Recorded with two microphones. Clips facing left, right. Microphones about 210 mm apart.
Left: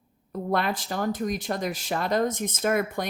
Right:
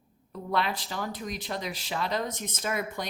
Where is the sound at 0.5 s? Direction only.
50° left (ahead or behind).